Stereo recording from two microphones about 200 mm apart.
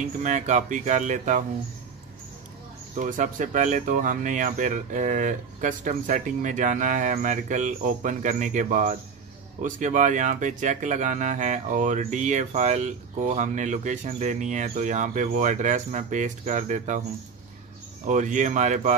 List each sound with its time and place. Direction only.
0.2 s speech: 35° right (ahead or behind)
3.0 s speech: 40° right (ahead or behind)
18.0 s speech: 40° right (ahead or behind)